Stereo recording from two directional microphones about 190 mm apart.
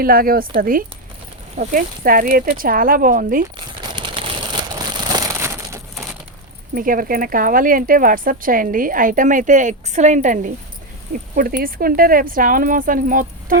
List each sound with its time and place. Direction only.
0.0 s speech: 50° right (ahead or behind)
3.8 s a sound: 25° right (ahead or behind)
6.7 s speech: 45° right (ahead or behind)